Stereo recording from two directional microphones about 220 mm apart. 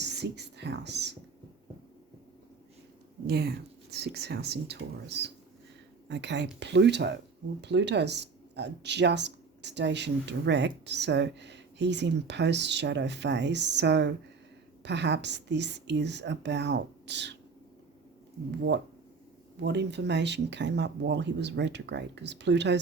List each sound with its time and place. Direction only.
0.0 s whispering: 50° right (ahead or behind)
3.2 s speech: 45° right (ahead or behind)
19.5 s speech: 50° right (ahead or behind)